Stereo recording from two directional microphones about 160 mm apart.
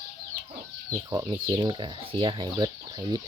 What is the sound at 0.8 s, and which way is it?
Speech, 20° right (ahead or behind).